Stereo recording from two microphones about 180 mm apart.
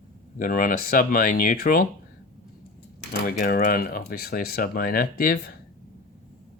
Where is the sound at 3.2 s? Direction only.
50° left (ahead or behind).